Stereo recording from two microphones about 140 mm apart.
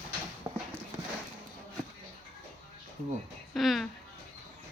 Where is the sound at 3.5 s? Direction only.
Centre (ahead or behind).